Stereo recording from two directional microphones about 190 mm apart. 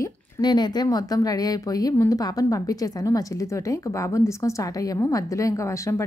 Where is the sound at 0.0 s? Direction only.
20° left (ahead or behind).